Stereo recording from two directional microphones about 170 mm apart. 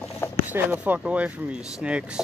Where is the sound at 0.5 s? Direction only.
10° right (ahead or behind).